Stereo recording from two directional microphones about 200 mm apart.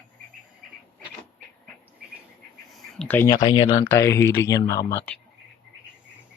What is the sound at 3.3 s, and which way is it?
Speech, 25° left (ahead or behind).